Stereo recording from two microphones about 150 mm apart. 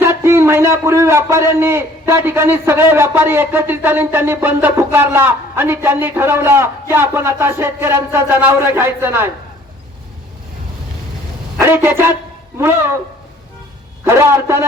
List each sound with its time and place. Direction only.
0.0 s a man's voice: 15° right (ahead or behind)
11.6 s a man's voice: 15° right (ahead or behind)
14.0 s a man's voice: 20° right (ahead or behind)